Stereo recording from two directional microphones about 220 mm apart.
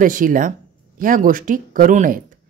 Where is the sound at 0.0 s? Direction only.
40° right (ahead or behind).